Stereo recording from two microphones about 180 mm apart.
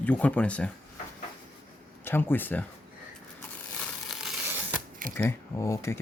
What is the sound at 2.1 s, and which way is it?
Speech, 10° left (ahead or behind).